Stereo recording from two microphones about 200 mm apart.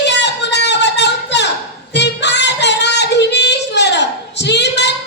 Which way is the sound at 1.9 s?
60° left (ahead or behind).